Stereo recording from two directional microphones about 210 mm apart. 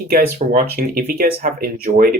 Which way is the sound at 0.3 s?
45° right (ahead or behind).